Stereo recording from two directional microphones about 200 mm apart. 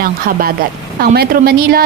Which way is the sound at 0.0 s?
45° right (ahead or behind).